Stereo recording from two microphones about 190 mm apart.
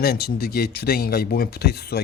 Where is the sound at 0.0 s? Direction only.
55° left (ahead or behind).